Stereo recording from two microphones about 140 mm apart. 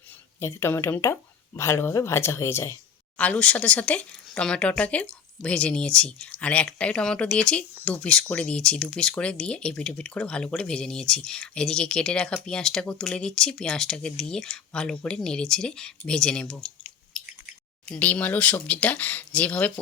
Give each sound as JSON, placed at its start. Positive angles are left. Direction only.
{"t": 0.3, "sound": "speech", "side_deg": 20}
{"t": 17.8, "sound": "speech", "side_deg": 10}